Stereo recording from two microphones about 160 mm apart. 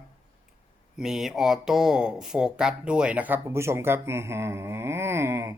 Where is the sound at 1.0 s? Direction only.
Centre (ahead or behind).